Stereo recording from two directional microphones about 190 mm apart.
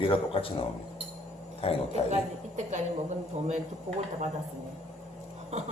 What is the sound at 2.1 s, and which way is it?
A woman's voice, 40° right (ahead or behind).